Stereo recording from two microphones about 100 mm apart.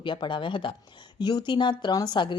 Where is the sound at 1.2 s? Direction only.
45° left (ahead or behind).